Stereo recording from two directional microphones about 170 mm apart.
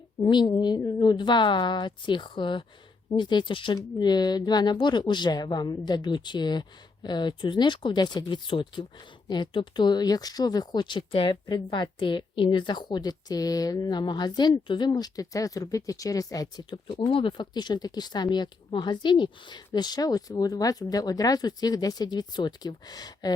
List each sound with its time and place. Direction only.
0.2 s speech: 25° left (ahead or behind)